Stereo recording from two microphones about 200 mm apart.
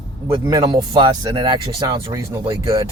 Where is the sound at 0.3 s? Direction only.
20° right (ahead or behind).